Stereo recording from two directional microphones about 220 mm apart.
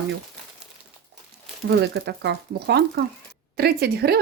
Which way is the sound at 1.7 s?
50° right (ahead or behind).